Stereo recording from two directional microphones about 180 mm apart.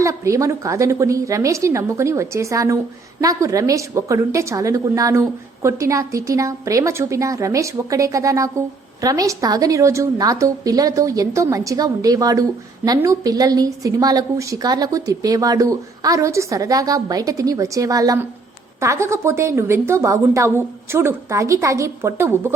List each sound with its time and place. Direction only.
0.0 s a woman's voice: 15° right (ahead or behind)